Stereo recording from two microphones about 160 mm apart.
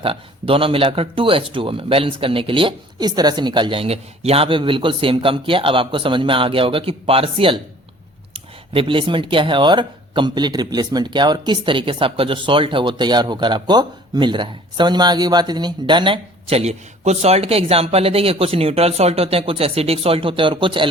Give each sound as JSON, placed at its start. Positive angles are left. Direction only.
{"t": 0.0, "sound": "speech", "side_deg": -35}